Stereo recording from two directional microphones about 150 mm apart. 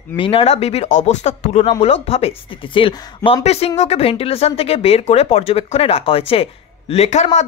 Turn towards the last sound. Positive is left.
turn(degrees=50)  # may be behind; listen again after turning